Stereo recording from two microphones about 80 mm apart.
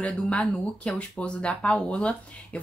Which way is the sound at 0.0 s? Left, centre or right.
Centre.